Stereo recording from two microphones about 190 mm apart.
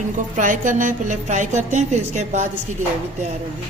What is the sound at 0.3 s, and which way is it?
Speech, 45° right (ahead or behind).